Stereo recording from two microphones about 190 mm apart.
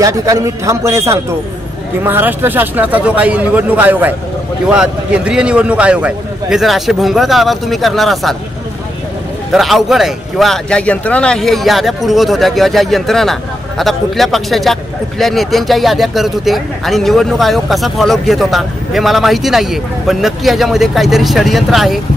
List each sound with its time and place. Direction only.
0.0 s a man's voice: 20° right (ahead or behind); by 8.4 s centre (ahead or behind)
9.5 s a man's voice: centre (ahead or behind)